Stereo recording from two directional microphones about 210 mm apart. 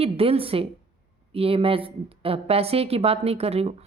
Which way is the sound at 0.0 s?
25° right (ahead or behind).